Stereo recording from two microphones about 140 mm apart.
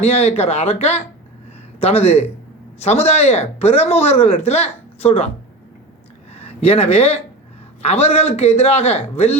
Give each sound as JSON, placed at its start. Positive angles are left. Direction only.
{"t": 0.0, "sound": "speech", "side_deg": 45}
{"t": 6.4, "sound": "speech", "side_deg": 45}